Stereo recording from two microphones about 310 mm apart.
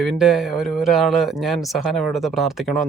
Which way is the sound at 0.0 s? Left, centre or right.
Centre.